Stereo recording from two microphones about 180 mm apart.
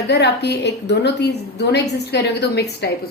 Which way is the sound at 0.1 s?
70° left (ahead or behind).